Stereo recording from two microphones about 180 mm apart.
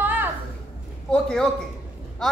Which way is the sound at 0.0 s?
10° right (ahead or behind).